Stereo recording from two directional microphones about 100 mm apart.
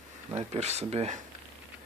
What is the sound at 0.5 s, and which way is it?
Speech, 90° right.